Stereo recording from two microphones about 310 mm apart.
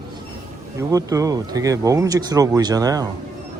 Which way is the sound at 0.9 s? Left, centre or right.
Centre.